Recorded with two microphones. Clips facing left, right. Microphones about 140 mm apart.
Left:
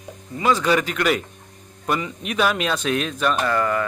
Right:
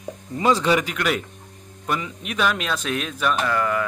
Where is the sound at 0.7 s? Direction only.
15° right (ahead or behind).